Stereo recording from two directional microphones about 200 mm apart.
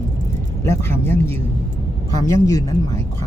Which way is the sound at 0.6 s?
15° left (ahead or behind).